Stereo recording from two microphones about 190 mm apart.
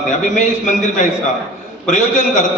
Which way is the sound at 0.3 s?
40° left (ahead or behind).